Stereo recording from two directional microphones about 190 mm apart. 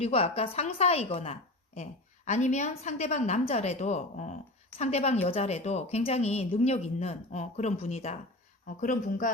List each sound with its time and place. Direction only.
0.0 s a woman's voice: 30° left (ahead or behind)
8.6 s speech: 45° left (ahead or behind)